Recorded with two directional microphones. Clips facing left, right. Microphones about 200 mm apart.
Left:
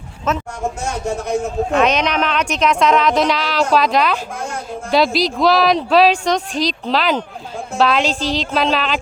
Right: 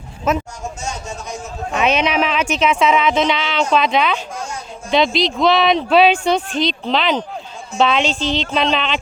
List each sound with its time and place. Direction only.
0.3 s a man's voice: 10° right (ahead or behind)
0.6 s a man's voice: 60° left (ahead or behind)
1.8 s speech: 5° right (ahead or behind)